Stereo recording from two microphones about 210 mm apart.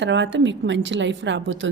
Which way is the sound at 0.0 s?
60° right (ahead or behind).